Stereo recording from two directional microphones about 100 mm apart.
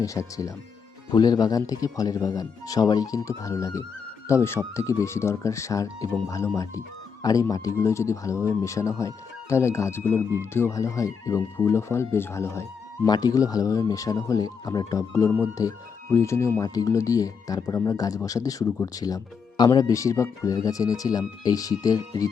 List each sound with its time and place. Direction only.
0.0 s speech: 30° left (ahead or behind)
13.1 s speech: 40° left (ahead or behind)